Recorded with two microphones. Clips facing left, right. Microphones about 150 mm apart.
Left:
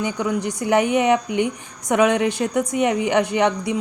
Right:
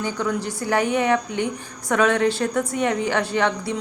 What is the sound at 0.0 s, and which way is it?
Speech, 15° left (ahead or behind).